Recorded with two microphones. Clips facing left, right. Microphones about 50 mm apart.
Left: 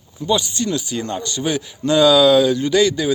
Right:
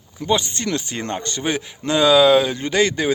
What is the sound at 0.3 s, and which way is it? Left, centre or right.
A man's voice, right.